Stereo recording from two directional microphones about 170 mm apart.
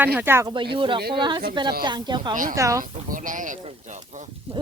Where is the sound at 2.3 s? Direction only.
50° right (ahead or behind).